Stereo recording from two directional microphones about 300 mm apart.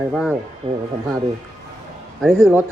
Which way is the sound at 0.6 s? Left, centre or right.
Centre.